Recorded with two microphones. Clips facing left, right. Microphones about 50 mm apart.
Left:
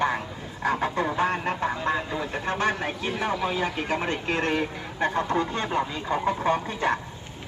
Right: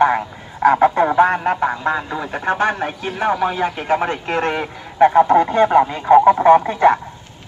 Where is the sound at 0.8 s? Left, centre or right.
Right.